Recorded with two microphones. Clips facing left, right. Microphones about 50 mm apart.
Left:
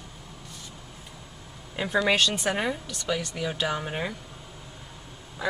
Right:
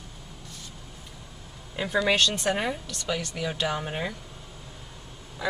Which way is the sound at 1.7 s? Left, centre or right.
Centre.